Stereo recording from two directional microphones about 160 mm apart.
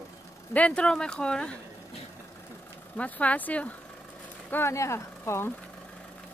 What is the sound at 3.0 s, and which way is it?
Speech, 10° left (ahead or behind).